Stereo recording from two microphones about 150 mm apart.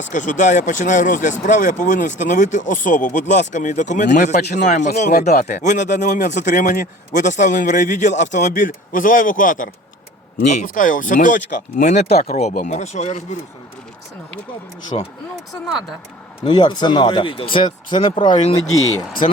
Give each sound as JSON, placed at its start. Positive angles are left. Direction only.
{"t": 0.0, "sound": "speech", "side_deg": 55}
{"t": 14.9, "sound": "speech", "side_deg": 40}
{"t": 16.4, "sound": "speech", "side_deg": 30}